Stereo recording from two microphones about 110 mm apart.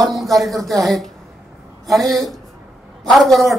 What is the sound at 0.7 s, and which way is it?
A woman's voice, centre (ahead or behind).